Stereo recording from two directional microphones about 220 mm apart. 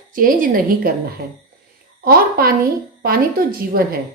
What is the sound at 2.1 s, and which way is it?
Speech, 45° right (ahead or behind).